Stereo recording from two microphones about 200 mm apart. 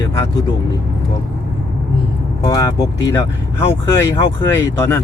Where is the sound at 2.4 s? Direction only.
20° left (ahead or behind).